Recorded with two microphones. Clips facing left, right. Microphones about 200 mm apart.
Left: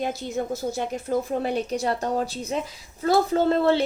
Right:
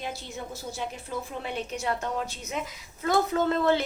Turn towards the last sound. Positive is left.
turn(degrees=30)  # may be behind; listen again after turning